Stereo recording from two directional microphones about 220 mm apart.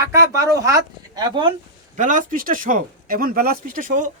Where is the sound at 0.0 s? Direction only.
15° right (ahead or behind).